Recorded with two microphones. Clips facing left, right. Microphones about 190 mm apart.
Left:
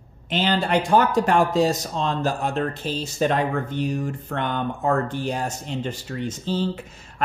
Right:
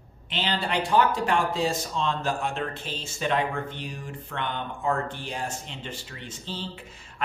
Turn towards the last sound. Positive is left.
turn(degrees=45)  # may be behind; listen again after turning